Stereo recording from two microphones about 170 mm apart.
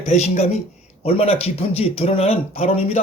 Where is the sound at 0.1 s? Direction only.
40° left (ahead or behind).